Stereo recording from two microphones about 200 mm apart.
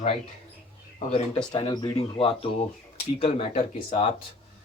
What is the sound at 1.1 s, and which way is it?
Speech, 30° left (ahead or behind).